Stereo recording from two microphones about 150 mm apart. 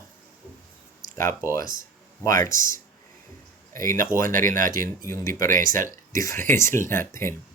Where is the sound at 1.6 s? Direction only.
65° right (ahead or behind).